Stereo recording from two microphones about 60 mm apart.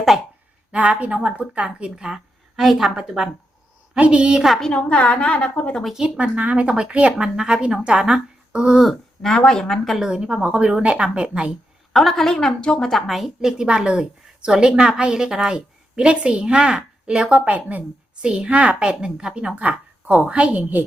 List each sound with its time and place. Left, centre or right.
0.7 s a woman's voice: right
4.6 s a woman's voice: centre
6.0 s a woman's voice: centre
8.8 s a woman's voice: centre
10.0 s a woman's voice: centre
11.9 s a woman's voice: centre
13.1 s a woman's voice: centre; by 20.8 s right